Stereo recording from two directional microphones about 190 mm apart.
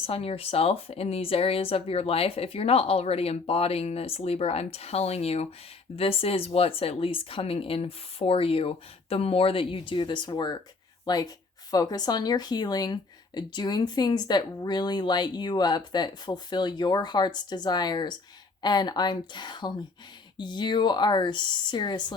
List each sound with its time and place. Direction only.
0.0 s speech: 30° left (ahead or behind)